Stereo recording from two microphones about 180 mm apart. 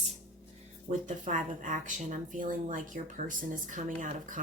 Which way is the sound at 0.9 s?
40° right (ahead or behind).